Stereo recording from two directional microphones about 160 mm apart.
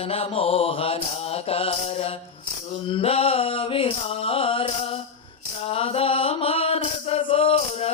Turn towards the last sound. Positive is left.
turn(degrees=35)  # may be behind; listen again after turning